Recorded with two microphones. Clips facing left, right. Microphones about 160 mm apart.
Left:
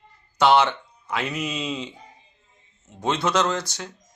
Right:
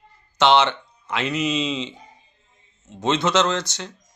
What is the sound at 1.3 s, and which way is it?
Speech, 90° right.